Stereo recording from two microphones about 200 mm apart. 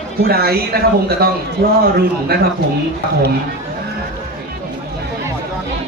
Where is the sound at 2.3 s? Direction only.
50° right (ahead or behind).